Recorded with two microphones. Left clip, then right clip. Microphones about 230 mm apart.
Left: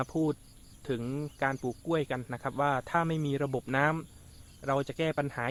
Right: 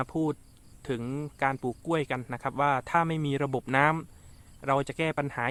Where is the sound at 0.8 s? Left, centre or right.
Centre.